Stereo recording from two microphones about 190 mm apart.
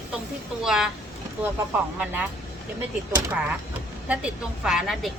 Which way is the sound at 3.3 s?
10° right (ahead or behind).